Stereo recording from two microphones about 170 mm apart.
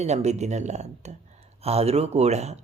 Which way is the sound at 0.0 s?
40° right (ahead or behind).